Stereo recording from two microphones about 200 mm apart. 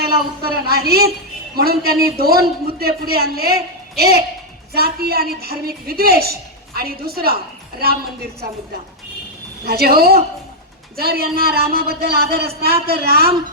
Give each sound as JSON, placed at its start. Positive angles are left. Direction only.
{"t": 0.0, "sound": "a man's voice", "side_deg": -50}
{"t": 9.6, "sound": "a man's voice", "side_deg": -50}